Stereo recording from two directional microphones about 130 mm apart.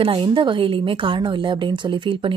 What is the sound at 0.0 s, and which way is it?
A woman's voice, 40° right (ahead or behind).